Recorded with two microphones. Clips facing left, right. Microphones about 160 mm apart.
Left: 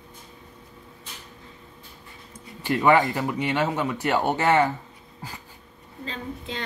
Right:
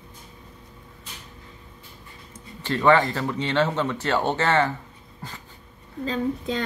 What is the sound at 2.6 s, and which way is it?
Speech, 15° left (ahead or behind).